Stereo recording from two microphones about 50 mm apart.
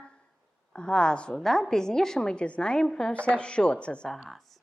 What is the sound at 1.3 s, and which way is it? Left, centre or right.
A woman's voice, centre.